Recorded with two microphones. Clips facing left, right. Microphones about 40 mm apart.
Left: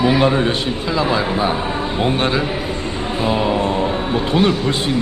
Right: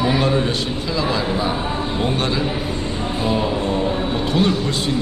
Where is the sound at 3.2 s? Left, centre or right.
Left.